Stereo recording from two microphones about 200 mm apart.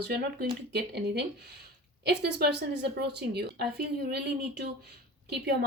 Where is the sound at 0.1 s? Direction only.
55° right (ahead or behind).